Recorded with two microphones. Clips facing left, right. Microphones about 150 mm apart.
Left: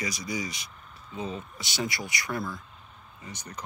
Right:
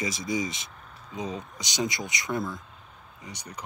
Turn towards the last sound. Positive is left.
turn(degrees=-10)  # may be behind; listen again after turning